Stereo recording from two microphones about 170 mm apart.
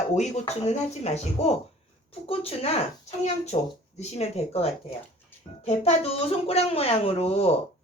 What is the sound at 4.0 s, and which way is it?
A child's voice, 40° left (ahead or behind).